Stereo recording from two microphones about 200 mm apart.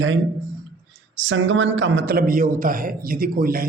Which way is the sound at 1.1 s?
70° right (ahead or behind).